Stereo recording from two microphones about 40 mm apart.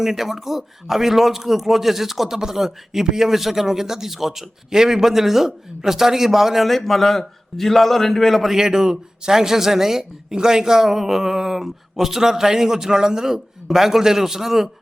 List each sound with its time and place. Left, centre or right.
0.0 s a man's voice: centre
8.4 s a man's voice: centre